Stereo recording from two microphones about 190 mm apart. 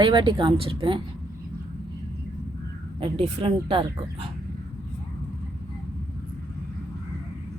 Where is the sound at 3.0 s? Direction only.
30° right (ahead or behind).